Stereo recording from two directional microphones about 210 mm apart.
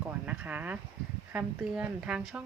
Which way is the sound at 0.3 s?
10° right (ahead or behind).